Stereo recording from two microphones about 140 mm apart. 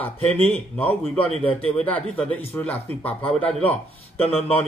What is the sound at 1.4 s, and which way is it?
Speech, 45° left (ahead or behind).